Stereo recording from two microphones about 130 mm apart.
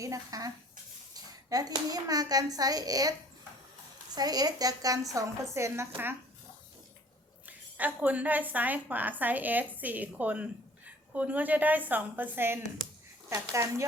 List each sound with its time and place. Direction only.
0.0 s a child's voice: 25° right (ahead or behind)
7.4 s a woman's voice: 10° right (ahead or behind)